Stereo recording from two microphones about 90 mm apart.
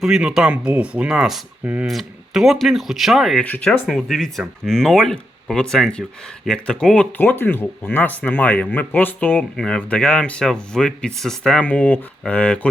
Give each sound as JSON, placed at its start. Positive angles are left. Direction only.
{"t": 0.0, "sound": "speech", "side_deg": -5}
{"t": 1.9, "sound": "speech", "side_deg": 0}
{"t": 7.2, "sound": "speech", "side_deg": 20}